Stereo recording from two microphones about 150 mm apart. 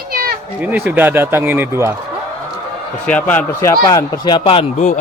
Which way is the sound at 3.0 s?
10° left (ahead or behind).